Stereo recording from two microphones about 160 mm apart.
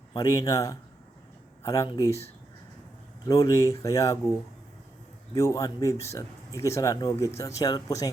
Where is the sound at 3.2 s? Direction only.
20° left (ahead or behind).